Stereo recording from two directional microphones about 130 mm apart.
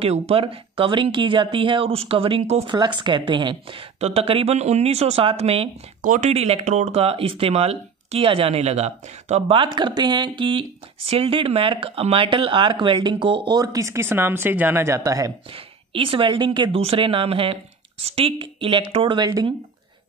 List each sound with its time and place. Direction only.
0.0 s a woman's voice: 50° right (ahead or behind)
2.6 s a woman's voice: 35° right (ahead or behind)
6.0 s speech: 80° right
6.3 s speech: 50° right (ahead or behind); by 15.3 s 25° right (ahead or behind)
15.5 s a woman's voice: 45° right (ahead or behind)